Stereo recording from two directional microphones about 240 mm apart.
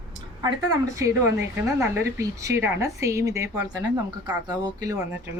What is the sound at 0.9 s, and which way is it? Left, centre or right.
Speech, centre.